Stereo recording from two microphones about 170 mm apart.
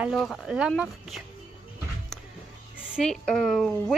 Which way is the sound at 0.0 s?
Centre (ahead or behind).